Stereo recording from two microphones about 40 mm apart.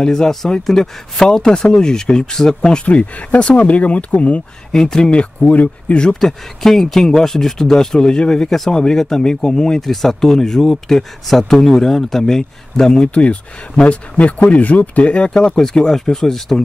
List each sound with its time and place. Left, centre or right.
0.0 s speech: centre; by 4.4 s left
4.7 s speech: centre
5.1 s speech: left
6.1 s speech: centre
8.5 s speech: centre
13.1 s speech: left; by 16.6 s centre